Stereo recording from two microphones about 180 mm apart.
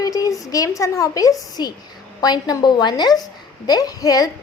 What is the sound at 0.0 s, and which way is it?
A woman's voice, 20° left (ahead or behind).